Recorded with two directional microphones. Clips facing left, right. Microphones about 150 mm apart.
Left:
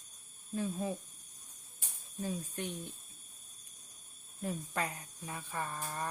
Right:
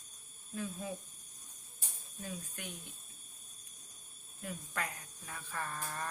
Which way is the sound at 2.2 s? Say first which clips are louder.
Left 7 dB; 30° left (ahead or behind).